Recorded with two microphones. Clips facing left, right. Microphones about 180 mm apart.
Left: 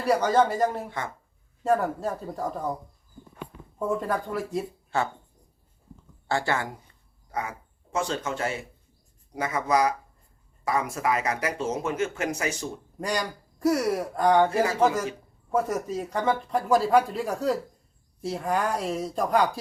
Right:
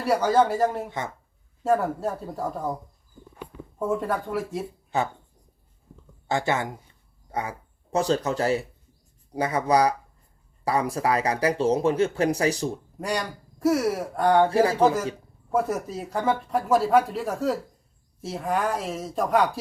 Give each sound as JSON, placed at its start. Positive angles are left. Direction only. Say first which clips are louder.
{"t": 0.0, "sound": "speech", "louder": "right 1 dB", "side_deg": -5}
{"t": 0.9, "sound": "a woman's voice", "louder": "right 2 dB", "side_deg": -20}
{"t": 1.6, "sound": "speech", "louder": "right 1 dB", "side_deg": 0}
{"t": 3.8, "sound": "speech", "louder": "right 1 dB", "side_deg": 0}
{"t": 4.9, "sound": "speech", "louder": "right 1 dB", "side_deg": -15}
{"t": 6.2, "sound": "speech", "louder": "right 2 dB", "side_deg": -20}
{"t": 7.3, "sound": "a sound", "louder": "right 2 dB", "side_deg": -30}
{"t": 7.9, "sound": "speech", "louder": "right 5 dB", "side_deg": -35}
{"t": 13.0, "sound": "speech", "louder": "left 1 dB", "side_deg": 0}
{"t": 14.5, "sound": "speech", "louder": "right 3 dB", "side_deg": -30}
{"t": 16.0, "sound": "speech", "louder": "right 1 dB", "side_deg": -5}